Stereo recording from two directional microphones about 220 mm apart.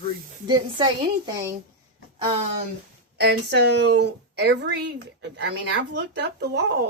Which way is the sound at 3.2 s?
45° right (ahead or behind).